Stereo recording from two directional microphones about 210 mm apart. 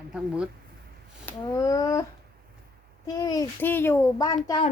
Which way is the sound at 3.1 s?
15° left (ahead or behind).